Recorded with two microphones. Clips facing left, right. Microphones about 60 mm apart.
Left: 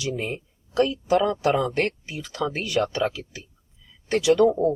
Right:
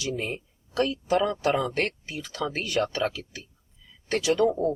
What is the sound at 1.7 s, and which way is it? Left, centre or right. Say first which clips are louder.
Speech: left 3 dB; left.